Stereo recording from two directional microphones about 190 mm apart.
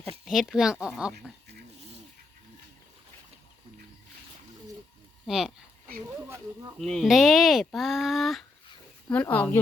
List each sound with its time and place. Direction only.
0.3 s speech: centre (ahead or behind)
5.2 s speech: centre (ahead or behind)
6.7 s speech: centre (ahead or behind)